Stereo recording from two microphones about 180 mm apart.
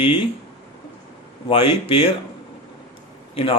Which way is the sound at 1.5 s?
30° left (ahead or behind).